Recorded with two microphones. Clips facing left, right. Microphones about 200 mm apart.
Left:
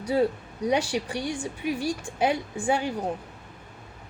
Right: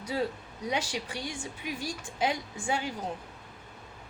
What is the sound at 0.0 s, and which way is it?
A woman's voice, 35° left (ahead or behind).